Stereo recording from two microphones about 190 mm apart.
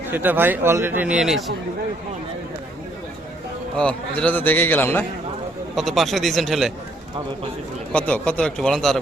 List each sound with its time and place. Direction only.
0.1 s a man's voice: 10° right (ahead or behind)
3.8 s a man's voice: 5° left (ahead or behind)
7.9 s speech: 5° left (ahead or behind)